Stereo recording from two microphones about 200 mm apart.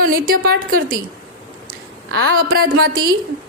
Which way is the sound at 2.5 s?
45° right (ahead or behind).